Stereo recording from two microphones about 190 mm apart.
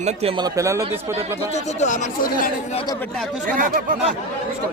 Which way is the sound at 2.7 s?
20° left (ahead or behind).